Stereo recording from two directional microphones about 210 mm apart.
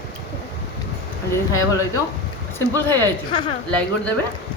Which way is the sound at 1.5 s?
15° left (ahead or behind).